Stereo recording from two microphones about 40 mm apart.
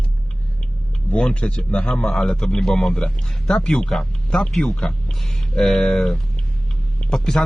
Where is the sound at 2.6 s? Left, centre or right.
Centre.